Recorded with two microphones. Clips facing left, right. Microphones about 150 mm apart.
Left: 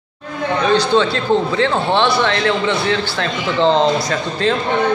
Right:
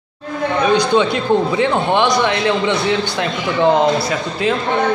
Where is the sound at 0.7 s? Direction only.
15° right (ahead or behind).